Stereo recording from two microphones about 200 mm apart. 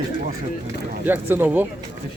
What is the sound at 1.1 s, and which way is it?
Speech, 10° right (ahead or behind).